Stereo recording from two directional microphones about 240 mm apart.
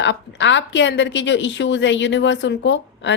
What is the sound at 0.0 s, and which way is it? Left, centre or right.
A woman's voice, left.